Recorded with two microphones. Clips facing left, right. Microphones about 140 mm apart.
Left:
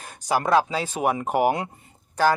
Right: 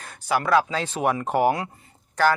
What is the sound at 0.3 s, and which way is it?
Speech, 35° left (ahead or behind).